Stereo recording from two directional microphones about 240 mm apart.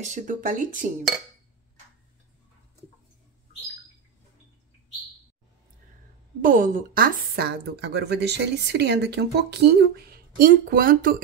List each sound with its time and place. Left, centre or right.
0.0 s speech: right
6.4 s a woman's voice: right